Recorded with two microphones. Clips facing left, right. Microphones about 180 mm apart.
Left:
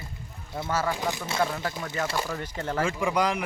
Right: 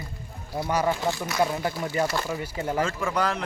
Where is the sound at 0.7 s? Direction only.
15° right (ahead or behind).